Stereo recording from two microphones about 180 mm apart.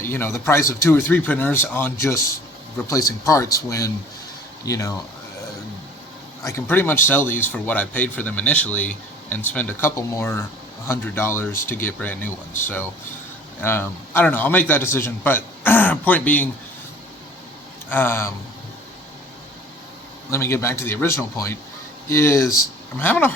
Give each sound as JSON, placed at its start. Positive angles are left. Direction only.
{"t": 0.0, "sound": "speech", "side_deg": 15}
{"t": 6.4, "sound": "speech", "side_deg": 15}
{"t": 17.8, "sound": "speech", "side_deg": 10}
{"t": 20.3, "sound": "speech", "side_deg": 15}